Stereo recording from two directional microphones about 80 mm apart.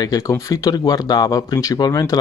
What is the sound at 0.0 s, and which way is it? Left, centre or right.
Speech, left.